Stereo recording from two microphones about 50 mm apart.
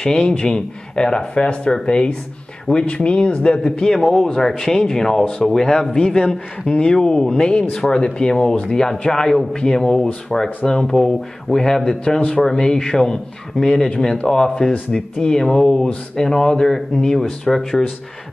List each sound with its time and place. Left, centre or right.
0.0 s speech: centre
3.7 s speech: centre